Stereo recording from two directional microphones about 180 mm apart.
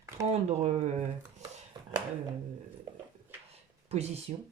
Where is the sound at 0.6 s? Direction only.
40° right (ahead or behind).